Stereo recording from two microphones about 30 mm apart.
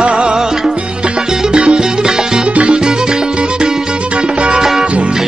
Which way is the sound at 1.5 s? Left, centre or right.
Right.